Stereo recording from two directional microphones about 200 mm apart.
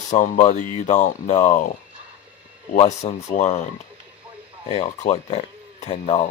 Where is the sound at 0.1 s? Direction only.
35° left (ahead or behind).